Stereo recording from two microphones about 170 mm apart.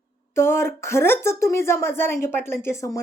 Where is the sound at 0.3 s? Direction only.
15° left (ahead or behind).